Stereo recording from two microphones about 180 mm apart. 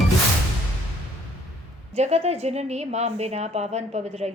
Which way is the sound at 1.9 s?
35° right (ahead or behind).